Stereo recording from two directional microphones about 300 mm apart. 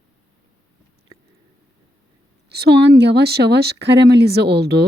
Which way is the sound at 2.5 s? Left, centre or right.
Right.